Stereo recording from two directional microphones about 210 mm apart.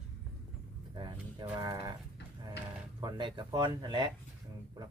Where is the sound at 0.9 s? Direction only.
20° right (ahead or behind).